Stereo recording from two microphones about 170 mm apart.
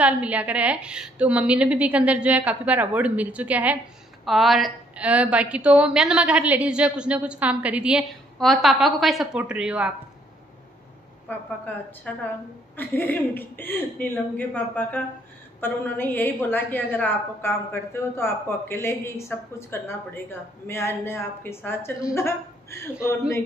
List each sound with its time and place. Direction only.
0.0 s a woman's voice: 10° right (ahead or behind)
11.2 s a woman's voice: 10° left (ahead or behind)